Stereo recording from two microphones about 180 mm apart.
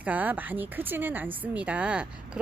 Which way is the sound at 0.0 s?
10° right (ahead or behind).